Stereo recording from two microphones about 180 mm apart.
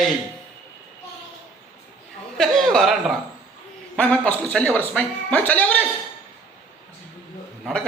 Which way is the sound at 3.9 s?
5° left (ahead or behind).